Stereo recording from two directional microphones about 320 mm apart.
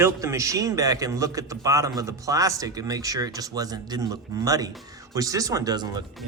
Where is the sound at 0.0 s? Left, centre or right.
Centre.